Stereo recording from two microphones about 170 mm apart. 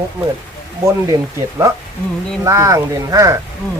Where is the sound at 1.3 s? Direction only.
20° right (ahead or behind).